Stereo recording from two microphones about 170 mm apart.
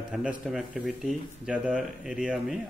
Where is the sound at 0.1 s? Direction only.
5° right (ahead or behind).